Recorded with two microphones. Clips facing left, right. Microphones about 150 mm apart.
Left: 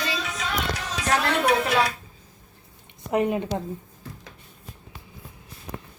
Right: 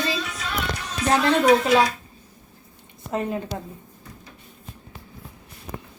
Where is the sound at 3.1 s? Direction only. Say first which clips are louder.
Left 3 dB; 20° left (ahead or behind).